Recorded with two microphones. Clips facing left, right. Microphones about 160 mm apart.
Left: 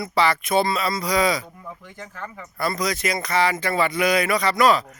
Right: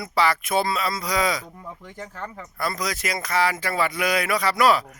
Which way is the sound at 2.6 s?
Centre (ahead or behind).